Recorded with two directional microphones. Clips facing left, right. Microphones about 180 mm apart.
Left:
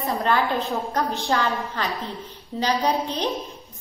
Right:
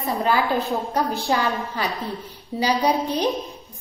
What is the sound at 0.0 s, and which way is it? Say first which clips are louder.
Speech: right 1 dB; centre (ahead or behind).